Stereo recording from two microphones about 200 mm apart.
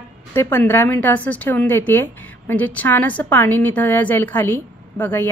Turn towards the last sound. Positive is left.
turn(degrees=10)  # may be behind; listen again after turning